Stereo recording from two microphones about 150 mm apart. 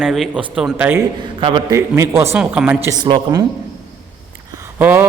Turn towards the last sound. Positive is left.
turn(degrees=-10)  # may be behind; listen again after turning